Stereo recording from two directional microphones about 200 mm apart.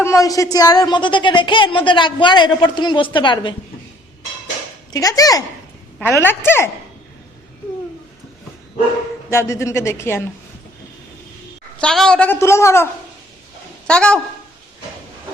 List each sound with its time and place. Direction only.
0.0 s speech: 15° left (ahead or behind)
4.9 s a woman's voice: 15° left (ahead or behind)
9.3 s a woman's voice: 15° left (ahead or behind)
11.8 s a woman's voice: 5° left (ahead or behind)